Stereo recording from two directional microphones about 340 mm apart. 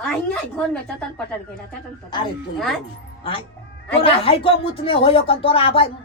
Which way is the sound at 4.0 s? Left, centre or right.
Centre.